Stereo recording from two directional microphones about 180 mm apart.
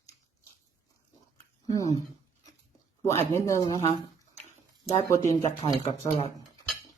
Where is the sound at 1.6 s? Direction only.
20° left (ahead or behind).